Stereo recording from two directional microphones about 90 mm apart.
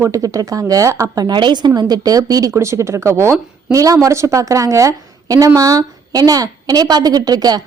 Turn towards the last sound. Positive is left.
turn(degrees=-45)  # may be behind; listen again after turning